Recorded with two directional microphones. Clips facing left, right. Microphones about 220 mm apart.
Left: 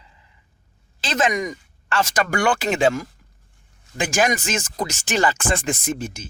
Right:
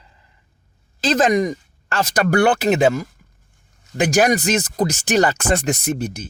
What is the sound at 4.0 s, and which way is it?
Speech, 40° right (ahead or behind).